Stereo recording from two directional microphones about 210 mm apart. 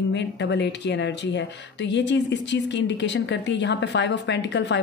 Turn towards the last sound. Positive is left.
turn(degrees=55)  # may be behind; listen again after turning